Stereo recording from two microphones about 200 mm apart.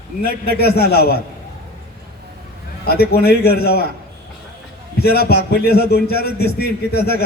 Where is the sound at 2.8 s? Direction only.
50° left (ahead or behind).